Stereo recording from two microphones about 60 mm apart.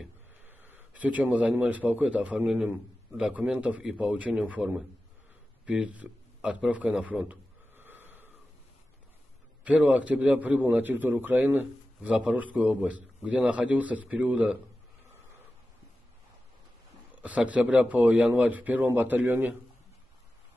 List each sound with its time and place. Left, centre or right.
0.5 s a man's voice: right
3.8 s a man's voice: centre
7.7 s snort: right
9.7 s a man's voice: right
12.0 s a man's voice: centre
17.1 s a man's voice: right